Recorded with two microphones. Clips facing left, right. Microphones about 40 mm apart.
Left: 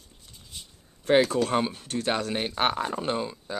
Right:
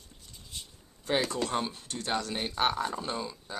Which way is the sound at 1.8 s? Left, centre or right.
Left.